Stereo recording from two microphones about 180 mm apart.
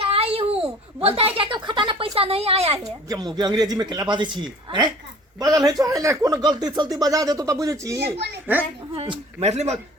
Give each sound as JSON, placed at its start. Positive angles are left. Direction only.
{"t": 0.0, "sound": "a sound", "side_deg": -30}
{"t": 1.0, "sound": "a woman's voice", "side_deg": -30}
{"t": 2.8, "sound": "speech", "side_deg": -20}
{"t": 9.0, "sound": "a man's voice", "side_deg": -35}